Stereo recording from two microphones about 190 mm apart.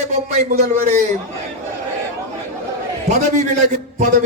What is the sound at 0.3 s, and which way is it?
Speech, 35° right (ahead or behind).